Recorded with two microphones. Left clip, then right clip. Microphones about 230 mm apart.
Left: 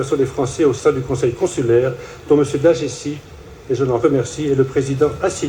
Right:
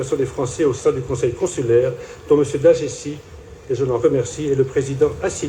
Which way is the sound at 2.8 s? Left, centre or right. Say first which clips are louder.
Left 1 dB; centre.